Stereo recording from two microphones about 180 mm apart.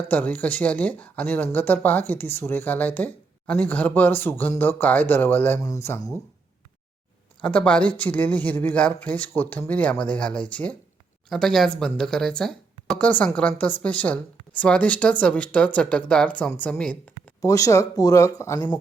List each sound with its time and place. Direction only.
0.1 s speech: 10° left (ahead or behind)
7.4 s speech: 5° left (ahead or behind)
17.4 s speech: 20° left (ahead or behind)